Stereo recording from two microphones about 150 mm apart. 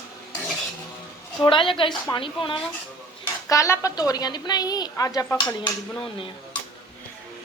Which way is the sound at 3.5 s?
20° left (ahead or behind).